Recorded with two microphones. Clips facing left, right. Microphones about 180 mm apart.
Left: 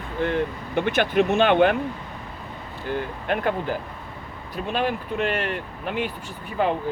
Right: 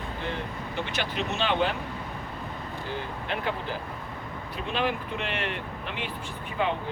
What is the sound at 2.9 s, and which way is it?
Speech, 50° left (ahead or behind).